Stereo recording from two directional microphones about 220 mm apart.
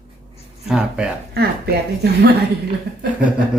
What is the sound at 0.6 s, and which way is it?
Speech, 5° right (ahead or behind).